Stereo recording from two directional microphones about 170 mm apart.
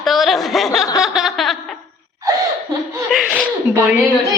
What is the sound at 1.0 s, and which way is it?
Chuckle, centre (ahead or behind).